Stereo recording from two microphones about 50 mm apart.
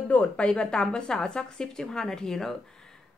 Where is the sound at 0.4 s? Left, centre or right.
Centre.